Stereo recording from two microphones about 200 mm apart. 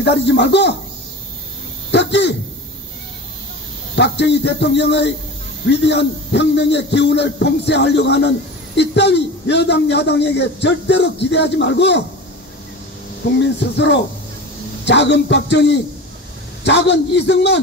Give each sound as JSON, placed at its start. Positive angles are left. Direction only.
{"t": 0.0, "sound": "a man's voice", "side_deg": 60}
{"t": 1.9, "sound": "a sound", "side_deg": 60}
{"t": 3.9, "sound": "a man's voice", "side_deg": 60}
{"t": 13.4, "sound": "a man's voice", "side_deg": 60}